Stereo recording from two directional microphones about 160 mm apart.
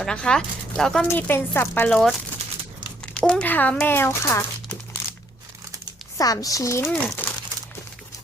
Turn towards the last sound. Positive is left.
turn(degrees=10)  # may be behind; listen again after turning